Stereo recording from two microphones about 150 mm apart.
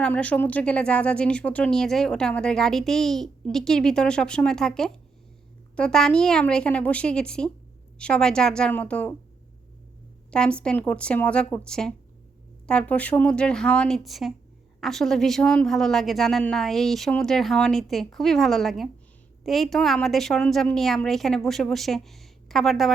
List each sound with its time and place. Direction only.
0.0 s a woman's voice: 10° left (ahead or behind)
10.3 s a woman's voice: 5° left (ahead or behind)